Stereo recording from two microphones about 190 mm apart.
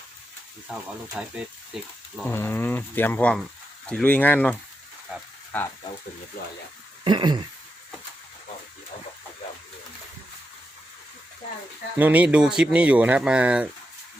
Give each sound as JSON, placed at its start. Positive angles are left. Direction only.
{"t": 0.7, "sound": "speech", "side_deg": -5}
{"t": 2.2, "sound": "speech", "side_deg": 10}
{"t": 5.1, "sound": "speech", "side_deg": -5}
{"t": 7.0, "sound": "speech", "side_deg": -25}
{"t": 11.9, "sound": "speech", "side_deg": -10}